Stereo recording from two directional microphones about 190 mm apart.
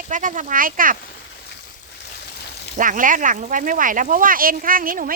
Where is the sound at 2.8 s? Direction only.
45° right (ahead or behind).